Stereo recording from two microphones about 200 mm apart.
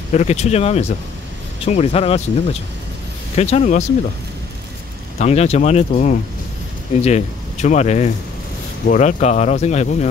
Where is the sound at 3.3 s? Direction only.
30° left (ahead or behind).